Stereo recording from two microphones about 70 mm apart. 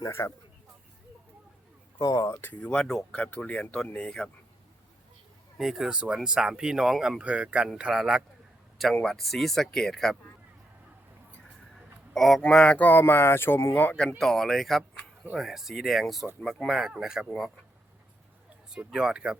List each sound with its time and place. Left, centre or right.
0.1 s speech: left
2.0 s speech: left
2.2 s speech: left
2.8 s speech: centre
3.2 s speech: left
5.5 s speech: centre
7.2 s speech: centre
9.0 s speech: centre
12.1 s speech: centre
12.4 s speech: centre; by 13.9 s left
14.2 s speech: centre
18.9 s speech: centre